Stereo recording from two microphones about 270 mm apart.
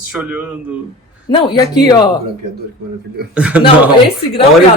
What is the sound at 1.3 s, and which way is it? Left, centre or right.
Speech, centre.